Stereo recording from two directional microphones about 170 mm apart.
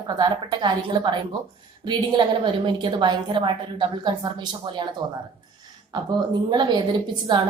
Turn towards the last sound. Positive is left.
turn(degrees=-25)  # may be behind; listen again after turning